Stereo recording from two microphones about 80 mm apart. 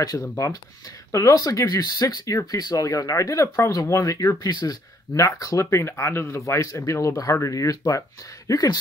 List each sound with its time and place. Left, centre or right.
0.0 s speech: left
5.1 s speech: left